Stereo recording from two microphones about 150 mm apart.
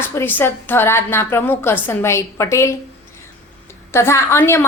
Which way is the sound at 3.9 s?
15° left (ahead or behind).